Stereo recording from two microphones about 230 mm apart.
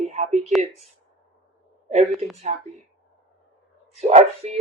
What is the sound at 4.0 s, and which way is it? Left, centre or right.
Speech, right.